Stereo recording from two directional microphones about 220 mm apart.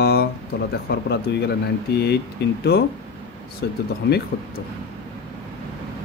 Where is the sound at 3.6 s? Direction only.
50° left (ahead or behind).